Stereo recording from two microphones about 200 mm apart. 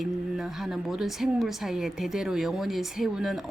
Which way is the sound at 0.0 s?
Centre (ahead or behind).